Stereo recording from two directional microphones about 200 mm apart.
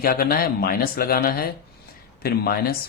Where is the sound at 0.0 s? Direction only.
50° left (ahead or behind).